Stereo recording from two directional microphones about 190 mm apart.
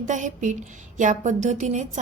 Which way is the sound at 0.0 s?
40° right (ahead or behind).